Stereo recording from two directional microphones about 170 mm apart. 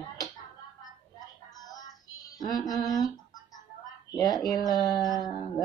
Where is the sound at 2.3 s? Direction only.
25° left (ahead or behind).